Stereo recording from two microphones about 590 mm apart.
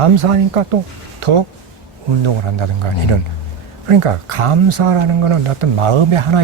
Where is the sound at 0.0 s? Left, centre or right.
Right.